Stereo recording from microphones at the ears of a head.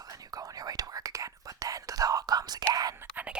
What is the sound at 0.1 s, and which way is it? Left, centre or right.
Whispering, right.